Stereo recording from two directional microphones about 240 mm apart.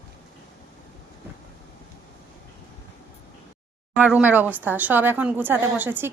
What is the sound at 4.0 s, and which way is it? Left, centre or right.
A woman's voice, centre.